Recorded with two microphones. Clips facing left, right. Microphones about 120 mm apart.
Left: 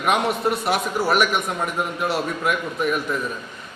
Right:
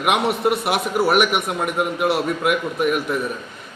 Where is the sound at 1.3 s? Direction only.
10° right (ahead or behind).